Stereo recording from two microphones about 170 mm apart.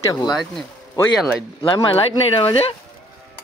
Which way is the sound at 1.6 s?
35° left (ahead or behind).